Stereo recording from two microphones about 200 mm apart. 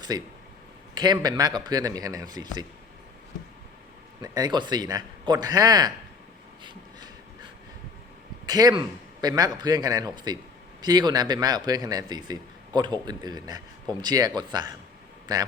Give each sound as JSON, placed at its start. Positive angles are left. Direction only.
{"t": 0.1, "sound": "a man's voice", "side_deg": -20}
{"t": 4.2, "sound": "a man's voice", "side_deg": -20}
{"t": 6.6, "sound": "a sound", "side_deg": -20}
{"t": 8.4, "sound": "a man's voice", "side_deg": -20}